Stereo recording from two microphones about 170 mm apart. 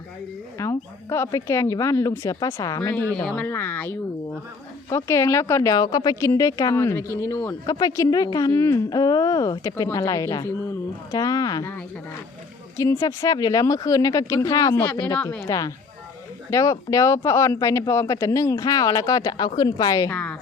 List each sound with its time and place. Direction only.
0.6 s speech: 15° left (ahead or behind)
3.2 s speech: 10° left (ahead or behind)
12.7 s speech: 15° left (ahead or behind)
15.2 s speech: 10° left (ahead or behind)
15.4 s speech: 20° left (ahead or behind)